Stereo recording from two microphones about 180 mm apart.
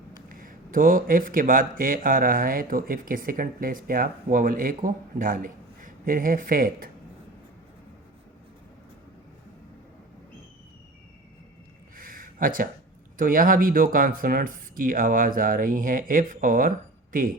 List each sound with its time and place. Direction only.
0.3 s speech: 50° right (ahead or behind)
11.9 s a sound: 50° right (ahead or behind)
13.1 s speech: 50° right (ahead or behind)